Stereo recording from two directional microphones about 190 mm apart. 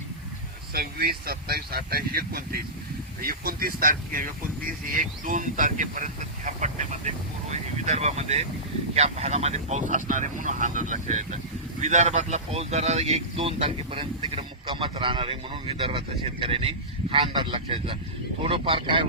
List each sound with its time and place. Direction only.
0.7 s speech: 55° right (ahead or behind); by 19.0 s 25° right (ahead or behind)